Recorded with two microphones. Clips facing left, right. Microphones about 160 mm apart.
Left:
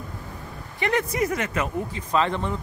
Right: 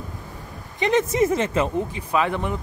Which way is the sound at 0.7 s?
20° right (ahead or behind).